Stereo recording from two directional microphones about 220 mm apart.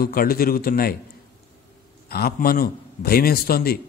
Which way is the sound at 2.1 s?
45° left (ahead or behind).